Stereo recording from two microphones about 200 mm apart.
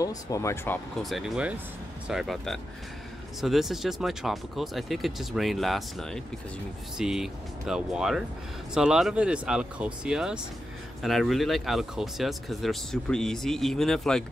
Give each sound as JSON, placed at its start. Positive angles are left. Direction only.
{"t": 0.0, "sound": "speech", "side_deg": 15}
{"t": 1.0, "sound": "speech", "side_deg": 0}